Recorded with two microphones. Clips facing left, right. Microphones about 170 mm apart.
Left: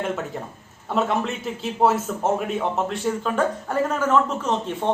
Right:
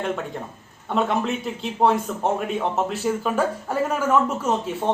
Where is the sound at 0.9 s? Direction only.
Centre (ahead or behind).